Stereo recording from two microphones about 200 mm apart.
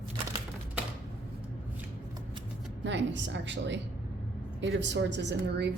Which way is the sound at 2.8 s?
65° right (ahead or behind).